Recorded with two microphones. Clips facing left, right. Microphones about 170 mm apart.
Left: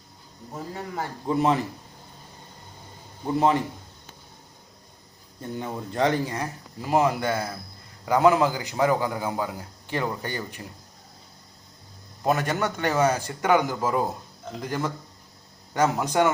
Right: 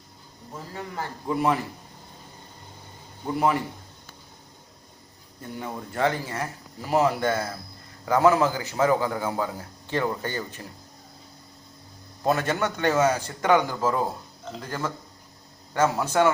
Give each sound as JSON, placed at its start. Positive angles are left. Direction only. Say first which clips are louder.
{"t": 0.9, "sound": "speech", "louder": "left 2 dB", "side_deg": 25}
{"t": 3.3, "sound": "speech", "louder": "left 2 dB", "side_deg": 25}
{"t": 5.5, "sound": "a man's voice", "louder": "left 2 dB", "side_deg": 20}
{"t": 12.2, "sound": "a man's voice", "louder": "even", "side_deg": 15}